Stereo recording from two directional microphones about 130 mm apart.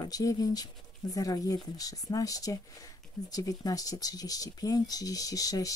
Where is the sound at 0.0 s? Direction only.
30° left (ahead or behind).